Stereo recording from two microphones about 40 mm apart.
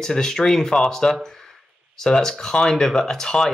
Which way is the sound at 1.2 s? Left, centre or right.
Centre.